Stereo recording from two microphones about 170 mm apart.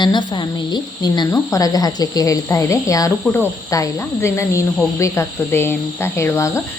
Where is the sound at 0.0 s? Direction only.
25° left (ahead or behind).